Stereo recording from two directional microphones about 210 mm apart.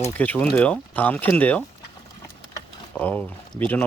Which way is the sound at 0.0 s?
10° left (ahead or behind).